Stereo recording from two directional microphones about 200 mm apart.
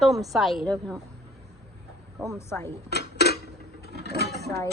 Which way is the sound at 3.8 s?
55° right (ahead or behind).